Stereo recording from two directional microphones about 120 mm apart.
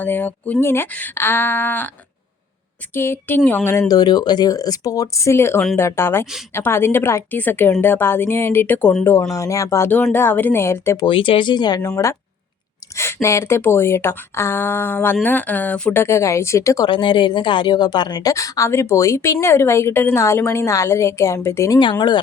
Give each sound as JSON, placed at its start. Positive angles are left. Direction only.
{"t": 0.0, "sound": "a woman's voice", "side_deg": 15}
{"t": 2.9, "sound": "a woman's voice", "side_deg": 20}
{"t": 3.8, "sound": "a woman's voice", "side_deg": 35}
{"t": 9.3, "sound": "a woman's voice", "side_deg": 25}
{"t": 11.0, "sound": "speech", "side_deg": 45}
{"t": 13.2, "sound": "a woman's voice", "side_deg": 20}
{"t": 16.9, "sound": "a woman's voice", "side_deg": 40}
{"t": 21.8, "sound": "speech", "side_deg": 40}